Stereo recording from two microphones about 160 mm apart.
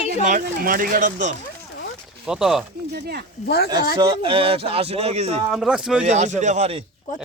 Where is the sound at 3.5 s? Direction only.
85° left.